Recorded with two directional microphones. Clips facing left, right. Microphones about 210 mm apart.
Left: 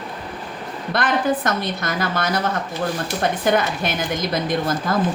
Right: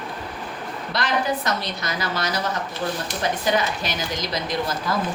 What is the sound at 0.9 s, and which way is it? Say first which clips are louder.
A woman's voice: left 4 dB; 55° left (ahead or behind).